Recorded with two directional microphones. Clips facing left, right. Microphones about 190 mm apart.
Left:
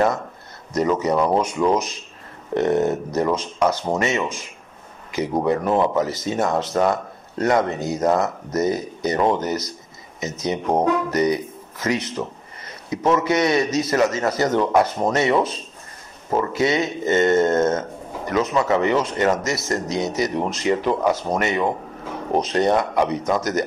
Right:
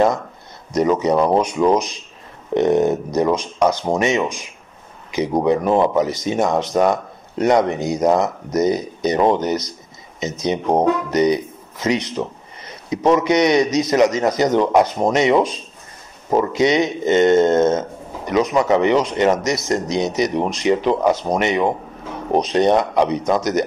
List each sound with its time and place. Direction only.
0.7 s speech: 20° right (ahead or behind)